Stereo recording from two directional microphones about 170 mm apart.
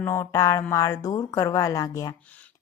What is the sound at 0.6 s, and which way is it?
A woman's voice, 15° left (ahead or behind).